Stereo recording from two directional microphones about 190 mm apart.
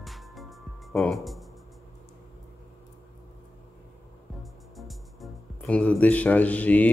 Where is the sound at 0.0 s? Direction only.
Centre (ahead or behind).